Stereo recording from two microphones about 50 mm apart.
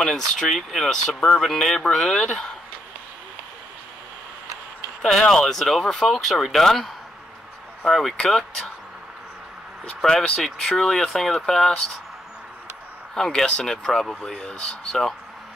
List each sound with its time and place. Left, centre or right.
0.0 s speech: centre
5.0 s speech: centre
9.8 s speech: centre
13.1 s speech: centre